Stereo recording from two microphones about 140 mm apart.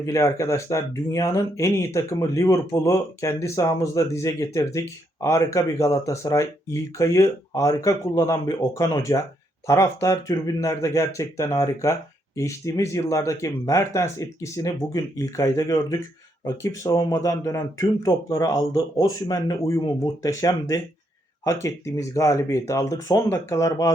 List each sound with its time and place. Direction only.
0.0 s speech: 20° left (ahead or behind)